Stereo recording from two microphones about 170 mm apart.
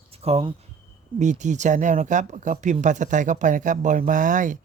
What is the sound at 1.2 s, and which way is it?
Speech, 45° right (ahead or behind).